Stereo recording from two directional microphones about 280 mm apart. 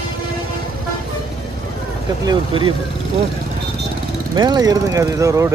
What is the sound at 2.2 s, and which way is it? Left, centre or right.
Speech, centre.